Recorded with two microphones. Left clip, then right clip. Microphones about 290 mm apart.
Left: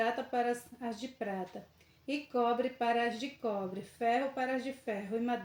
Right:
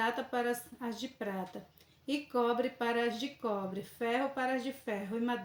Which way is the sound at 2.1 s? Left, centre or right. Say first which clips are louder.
Even; right.